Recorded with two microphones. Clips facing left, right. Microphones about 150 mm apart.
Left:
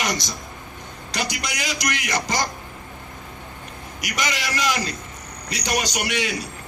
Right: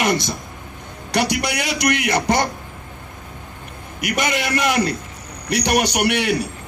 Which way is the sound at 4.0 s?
55° right (ahead or behind).